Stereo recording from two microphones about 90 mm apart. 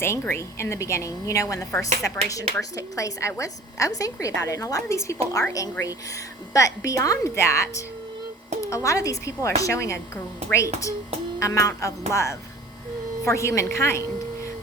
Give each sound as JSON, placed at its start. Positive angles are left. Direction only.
{"t": 0.0, "sound": "a woman's voice", "side_deg": 30}